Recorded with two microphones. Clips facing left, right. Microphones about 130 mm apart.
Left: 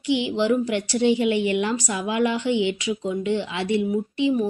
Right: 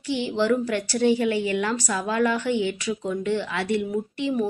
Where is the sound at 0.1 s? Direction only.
15° left (ahead or behind).